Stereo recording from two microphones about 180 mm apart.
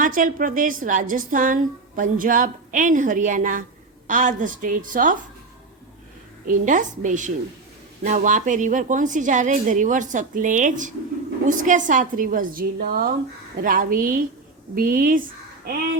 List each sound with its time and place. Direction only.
0.0 s a woman's voice: 50° right (ahead or behind)
6.5 s a woman's voice: 45° right (ahead or behind)